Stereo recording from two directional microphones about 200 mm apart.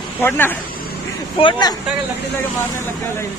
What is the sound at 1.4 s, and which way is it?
Speech, 20° left (ahead or behind).